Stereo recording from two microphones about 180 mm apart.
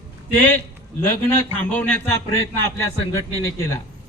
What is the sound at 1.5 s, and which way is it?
Speech, 10° left (ahead or behind).